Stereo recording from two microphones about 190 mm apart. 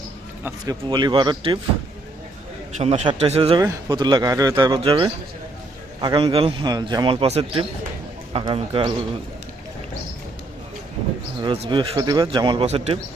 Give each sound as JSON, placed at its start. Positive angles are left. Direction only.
{"t": 0.6, "sound": "a man's voice", "side_deg": -20}
{"t": 2.7, "sound": "a man's voice", "side_deg": -35}
{"t": 11.4, "sound": "a man's voice", "side_deg": -30}